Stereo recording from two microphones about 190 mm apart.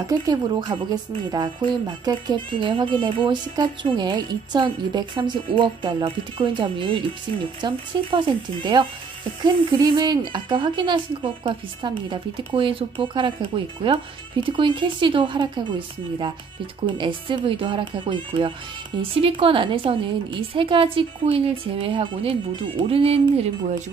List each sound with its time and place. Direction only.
0.1 s a woman's voice: 20° right (ahead or behind)
16.8 s a woman's voice: 25° right (ahead or behind)